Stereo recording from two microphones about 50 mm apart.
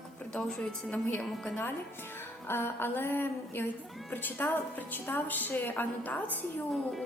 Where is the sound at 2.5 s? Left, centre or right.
Left.